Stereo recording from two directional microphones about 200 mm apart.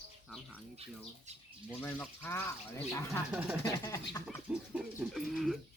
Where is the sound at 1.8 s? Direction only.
10° left (ahead or behind).